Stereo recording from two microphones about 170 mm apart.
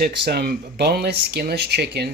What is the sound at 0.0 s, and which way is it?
Speech, 70° right (ahead or behind).